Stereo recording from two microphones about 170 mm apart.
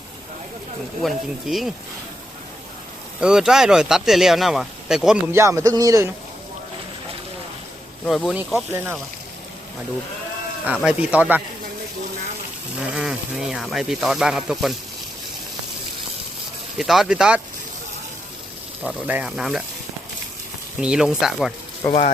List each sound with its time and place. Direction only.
1.0 s speech: centre (ahead or behind)
3.2 s speech: 5° right (ahead or behind)
5.3 s a man's voice: 15° right (ahead or behind)
8.0 s speech: centre (ahead or behind)
8.7 s a man's voice: 10° right (ahead or behind)
10.7 s a man's voice: 10° right (ahead or behind)
12.8 s speech: 5° right (ahead or behind)
16.7 s speech: centre (ahead or behind)
19.0 s speech: 5° right (ahead or behind)
20.8 s speech: 5° right (ahead or behind)
21.8 s speech: 10° left (ahead or behind)